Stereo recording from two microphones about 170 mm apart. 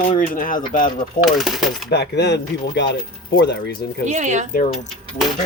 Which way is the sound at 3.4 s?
75° left (ahead or behind).